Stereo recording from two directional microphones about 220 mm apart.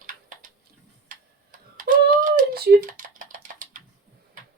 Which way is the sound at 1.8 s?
35° right (ahead or behind).